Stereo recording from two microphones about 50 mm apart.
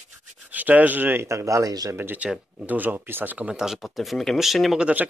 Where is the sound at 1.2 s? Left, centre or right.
Right.